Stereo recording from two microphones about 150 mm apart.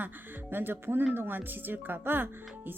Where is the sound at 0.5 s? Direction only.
15° right (ahead or behind).